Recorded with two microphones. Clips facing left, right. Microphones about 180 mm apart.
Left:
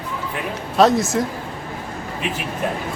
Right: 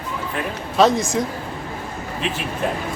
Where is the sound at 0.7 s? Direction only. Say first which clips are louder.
Left 1 dB; centre (ahead or behind).